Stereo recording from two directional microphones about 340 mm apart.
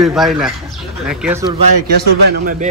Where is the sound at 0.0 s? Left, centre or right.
Centre.